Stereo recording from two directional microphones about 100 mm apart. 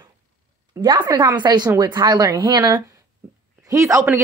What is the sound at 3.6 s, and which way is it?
Speech, 30° right (ahead or behind).